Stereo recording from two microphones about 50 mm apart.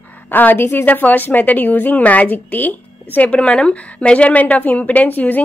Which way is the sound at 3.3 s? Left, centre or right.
Left.